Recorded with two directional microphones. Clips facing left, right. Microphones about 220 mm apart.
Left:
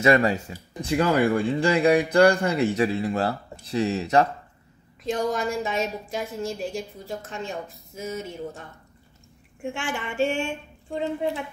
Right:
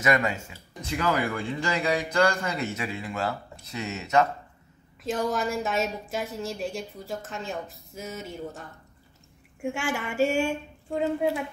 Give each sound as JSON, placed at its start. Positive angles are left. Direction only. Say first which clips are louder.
{"t": 0.0, "sound": "speech", "louder": "left 5 dB", "side_deg": 30}
{"t": 5.0, "sound": "a woman's voice", "louder": "left 2 dB", "side_deg": 0}